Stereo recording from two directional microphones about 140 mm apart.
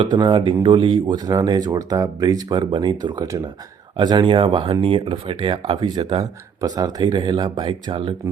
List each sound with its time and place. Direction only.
0.0 s speech: 35° right (ahead or behind)
6.6 s speech: 30° right (ahead or behind)